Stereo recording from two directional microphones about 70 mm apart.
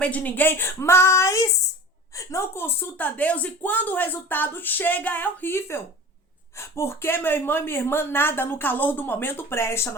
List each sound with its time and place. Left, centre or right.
0.0 s a woman's voice: left
3.2 s speech: left